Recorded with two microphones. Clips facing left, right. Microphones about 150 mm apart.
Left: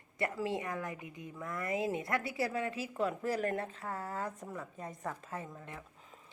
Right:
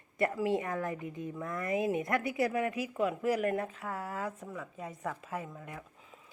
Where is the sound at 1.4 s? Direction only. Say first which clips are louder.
Right 2 dB; 20° right (ahead or behind).